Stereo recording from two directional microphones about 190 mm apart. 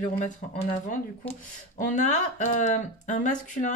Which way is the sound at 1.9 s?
40° left (ahead or behind).